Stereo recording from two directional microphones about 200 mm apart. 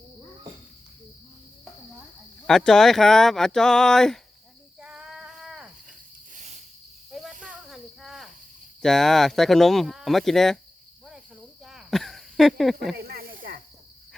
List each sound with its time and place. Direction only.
2.5 s speech: centre (ahead or behind)
4.8 s cricket: 5° right (ahead or behind)
6.3 s cricket: 35° right (ahead or behind)
7.1 s snake: centre (ahead or behind)
8.8 s speech: centre (ahead or behind)
11.6 s a sound: centre (ahead or behind)
13.0 s snake: 50° right (ahead or behind)